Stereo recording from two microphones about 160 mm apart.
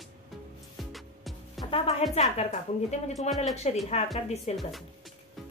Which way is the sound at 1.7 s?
40° left (ahead or behind).